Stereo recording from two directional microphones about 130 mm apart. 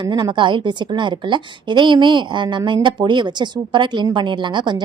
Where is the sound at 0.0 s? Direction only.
35° right (ahead or behind).